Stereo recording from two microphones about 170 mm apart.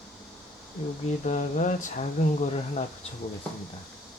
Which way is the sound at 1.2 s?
45° left (ahead or behind).